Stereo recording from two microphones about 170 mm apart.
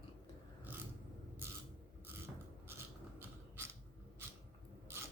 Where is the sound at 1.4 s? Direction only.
15° right (ahead or behind).